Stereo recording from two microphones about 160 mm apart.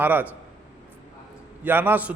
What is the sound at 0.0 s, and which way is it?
Speech, 10° right (ahead or behind).